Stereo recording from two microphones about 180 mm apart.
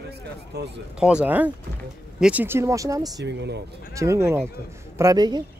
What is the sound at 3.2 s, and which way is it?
Speech, 75° right (ahead or behind).